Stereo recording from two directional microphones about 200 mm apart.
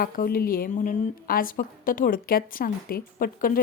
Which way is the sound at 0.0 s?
45° left (ahead or behind).